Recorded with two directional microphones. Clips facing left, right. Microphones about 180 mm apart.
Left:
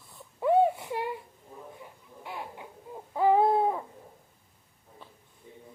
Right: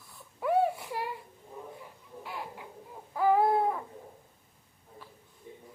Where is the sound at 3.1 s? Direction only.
20° left (ahead or behind).